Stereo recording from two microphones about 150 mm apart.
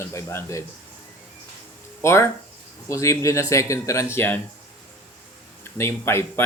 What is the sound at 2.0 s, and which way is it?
Speech, 20° left (ahead or behind).